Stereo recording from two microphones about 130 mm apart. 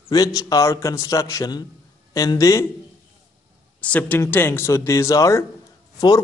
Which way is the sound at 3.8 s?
10° left (ahead or behind).